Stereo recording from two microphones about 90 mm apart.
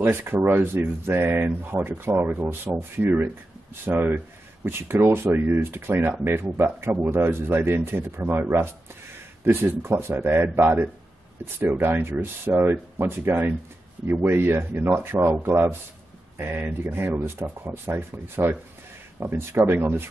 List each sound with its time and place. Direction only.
0.0 s speech: 20° right (ahead or behind)